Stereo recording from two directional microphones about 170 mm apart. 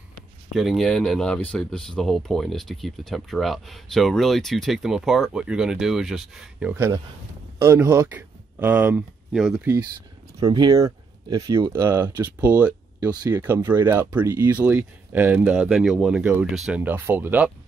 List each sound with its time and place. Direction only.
0.6 s speech: centre (ahead or behind)
10.4 s speech: 25° right (ahead or behind); by 13.1 s 10° right (ahead or behind)
13.1 s speech: 25° right (ahead or behind)
13.4 s speech: 10° right (ahead or behind)